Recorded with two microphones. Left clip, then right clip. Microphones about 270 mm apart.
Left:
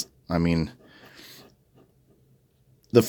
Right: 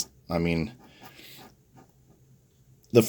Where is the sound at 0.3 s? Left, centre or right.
Left.